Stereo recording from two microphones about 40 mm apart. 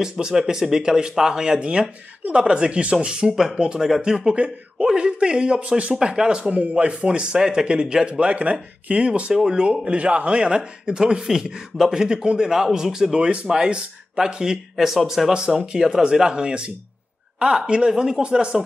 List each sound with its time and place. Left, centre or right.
0.2 s speech: centre; by 5.9 s right
5.9 s speech: centre
9.3 s speech: centre
9.6 s speech: right; by 13.1 s centre
13.1 s speech: right; by 15.4 s centre
15.4 s speech: centre